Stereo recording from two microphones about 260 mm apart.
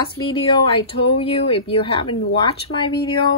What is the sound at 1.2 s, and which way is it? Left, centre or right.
Speech, left.